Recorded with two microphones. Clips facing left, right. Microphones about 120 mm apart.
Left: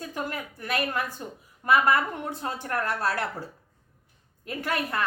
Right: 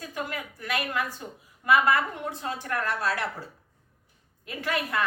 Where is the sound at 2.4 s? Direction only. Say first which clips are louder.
Left 1 dB; 35° left (ahead or behind).